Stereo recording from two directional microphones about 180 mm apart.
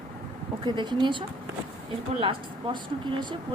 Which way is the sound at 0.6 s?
25° right (ahead or behind).